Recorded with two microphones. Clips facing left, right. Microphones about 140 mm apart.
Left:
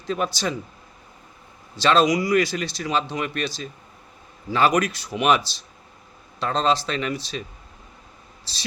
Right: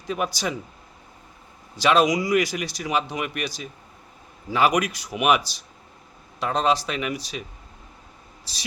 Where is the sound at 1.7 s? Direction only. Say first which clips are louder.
Left 1 dB; 15° right (ahead or behind).